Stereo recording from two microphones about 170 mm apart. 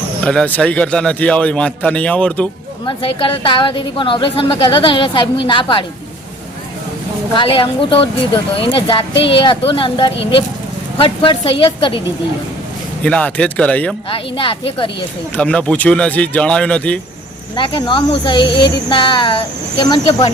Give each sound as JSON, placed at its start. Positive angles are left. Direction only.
{"t": 0.3, "sound": "a man's voice", "side_deg": 5}
{"t": 2.8, "sound": "a woman's voice", "side_deg": 30}
{"t": 7.3, "sound": "speech", "side_deg": 30}
{"t": 13.0, "sound": "a man's voice", "side_deg": 5}
{"t": 14.1, "sound": "speech", "side_deg": 30}
{"t": 15.4, "sound": "a man's voice", "side_deg": 5}
{"t": 17.5, "sound": "a woman's voice", "side_deg": 25}